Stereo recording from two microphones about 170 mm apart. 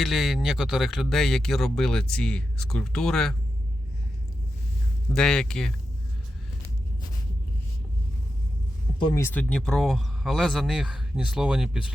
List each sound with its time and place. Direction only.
0.0 s speech: centre (ahead or behind)
5.1 s speech: 5° left (ahead or behind)
9.0 s speech: 30° left (ahead or behind)
9.2 s speech: 10° left (ahead or behind)